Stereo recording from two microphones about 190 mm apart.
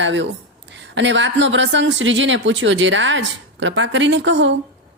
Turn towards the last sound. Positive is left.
turn(degrees=-70)  # may be behind; listen again after turning